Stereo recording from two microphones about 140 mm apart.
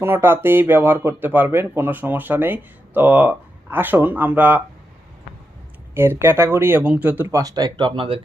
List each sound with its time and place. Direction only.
0.0 s speech: 15° right (ahead or behind)
5.9 s speech: 15° right (ahead or behind); by 8.2 s 40° right (ahead or behind)